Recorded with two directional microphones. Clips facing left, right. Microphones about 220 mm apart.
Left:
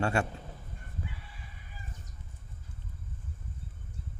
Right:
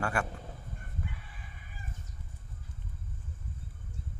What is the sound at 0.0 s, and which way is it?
Speech, 25° left (ahead or behind).